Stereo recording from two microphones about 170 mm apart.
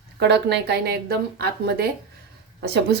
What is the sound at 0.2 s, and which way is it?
A woman's voice, 80° right.